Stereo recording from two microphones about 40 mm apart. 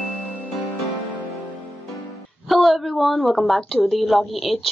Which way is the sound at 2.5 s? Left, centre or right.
Centre.